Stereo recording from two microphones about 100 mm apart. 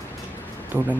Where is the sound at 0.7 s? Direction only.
20° right (ahead or behind).